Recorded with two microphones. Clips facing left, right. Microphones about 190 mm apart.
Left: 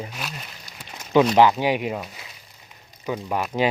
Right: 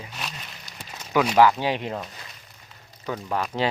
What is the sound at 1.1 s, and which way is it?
Speech, 25° left (ahead or behind).